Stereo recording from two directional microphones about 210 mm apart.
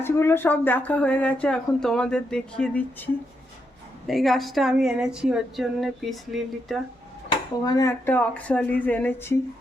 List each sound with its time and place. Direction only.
0.0 s speech: 10° left (ahead or behind)
4.0 s a woman's voice: centre (ahead or behind)
7.6 s speech: 20° left (ahead or behind)